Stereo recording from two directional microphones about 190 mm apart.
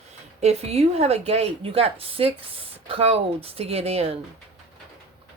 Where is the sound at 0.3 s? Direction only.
35° right (ahead or behind).